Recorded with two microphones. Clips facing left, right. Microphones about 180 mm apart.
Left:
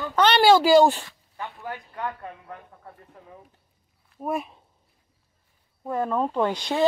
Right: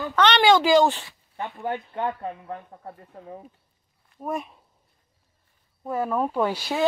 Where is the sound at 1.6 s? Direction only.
25° right (ahead or behind).